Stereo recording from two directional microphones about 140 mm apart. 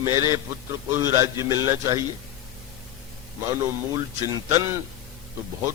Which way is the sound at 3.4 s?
20° right (ahead or behind).